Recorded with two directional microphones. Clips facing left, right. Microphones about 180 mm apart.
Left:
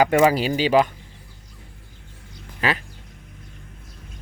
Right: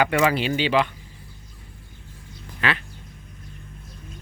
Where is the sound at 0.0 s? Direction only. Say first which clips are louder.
Left 4 dB; 40° left (ahead or behind).